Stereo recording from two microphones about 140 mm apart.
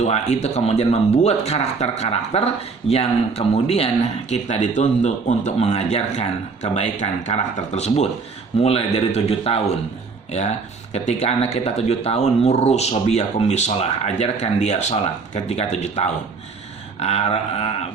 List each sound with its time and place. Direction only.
0.0 s speech: 50° left (ahead or behind)
10.9 s speech: 50° left (ahead or behind)